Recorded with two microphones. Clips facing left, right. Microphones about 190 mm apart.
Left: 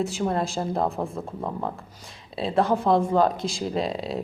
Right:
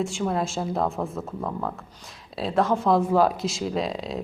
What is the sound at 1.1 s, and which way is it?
Speech, 10° left (ahead or behind).